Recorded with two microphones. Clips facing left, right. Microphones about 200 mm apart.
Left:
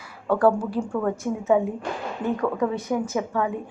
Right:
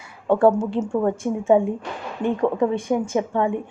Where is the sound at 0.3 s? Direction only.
25° right (ahead or behind).